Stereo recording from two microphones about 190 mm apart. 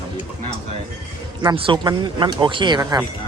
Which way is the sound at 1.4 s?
25° right (ahead or behind).